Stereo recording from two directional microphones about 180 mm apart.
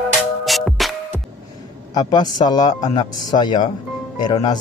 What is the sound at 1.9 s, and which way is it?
A man's voice, 25° left (ahead or behind).